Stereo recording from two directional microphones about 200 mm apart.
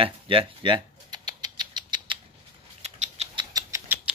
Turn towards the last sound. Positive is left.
turn(degrees=-15)  # may be behind; listen again after turning